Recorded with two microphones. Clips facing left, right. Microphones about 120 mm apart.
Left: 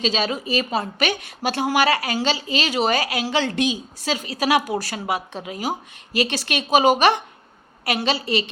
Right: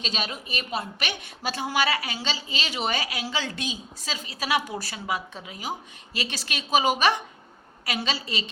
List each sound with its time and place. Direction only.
0.0 s a woman's voice: 90° left; by 8.4 s 65° left (ahead or behind)